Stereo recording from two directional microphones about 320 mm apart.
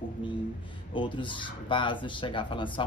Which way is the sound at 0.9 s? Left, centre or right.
Centre.